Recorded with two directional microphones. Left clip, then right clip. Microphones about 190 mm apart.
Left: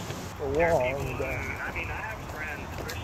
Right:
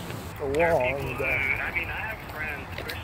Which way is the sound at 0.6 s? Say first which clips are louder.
Right 2 dB; 35° right (ahead or behind).